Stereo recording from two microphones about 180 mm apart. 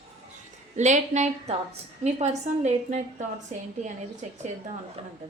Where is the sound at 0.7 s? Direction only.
40° right (ahead or behind).